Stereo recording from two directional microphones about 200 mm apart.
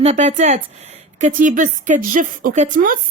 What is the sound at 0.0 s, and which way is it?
A woman's voice, 35° right (ahead or behind).